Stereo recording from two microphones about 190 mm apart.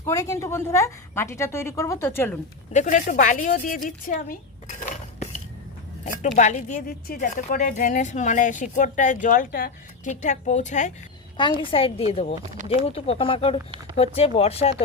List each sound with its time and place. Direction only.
0.1 s a woman's voice: 15° left (ahead or behind)
2.7 s a woman's voice: 45° left (ahead or behind)
4.8 s dishes: 35° left (ahead or behind)
6.3 s a woman's voice: 40° left (ahead or behind)
11.3 s a woman's voice: 25° left (ahead or behind)